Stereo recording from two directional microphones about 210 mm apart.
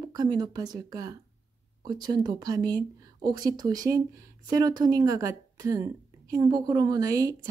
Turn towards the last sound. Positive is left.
turn(degrees=-15)  # may be behind; listen again after turning